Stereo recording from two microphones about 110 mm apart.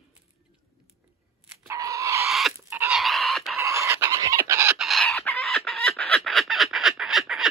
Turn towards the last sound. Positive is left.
turn(degrees=0)  # may be behind; listen again after turning